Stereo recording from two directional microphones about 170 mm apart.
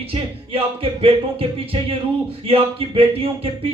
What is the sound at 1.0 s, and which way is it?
Speech, 35° right (ahead or behind).